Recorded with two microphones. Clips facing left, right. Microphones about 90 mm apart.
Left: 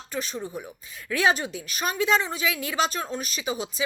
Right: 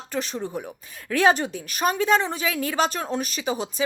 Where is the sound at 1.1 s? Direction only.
50° right (ahead or behind).